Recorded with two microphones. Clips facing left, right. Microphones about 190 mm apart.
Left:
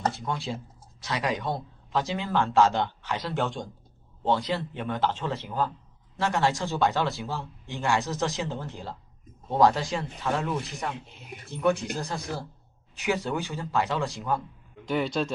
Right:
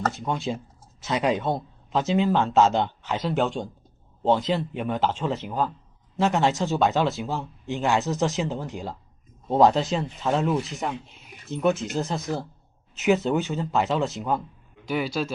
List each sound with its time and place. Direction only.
0.1 s speech: 20° right (ahead or behind)
14.8 s speech: 5° right (ahead or behind)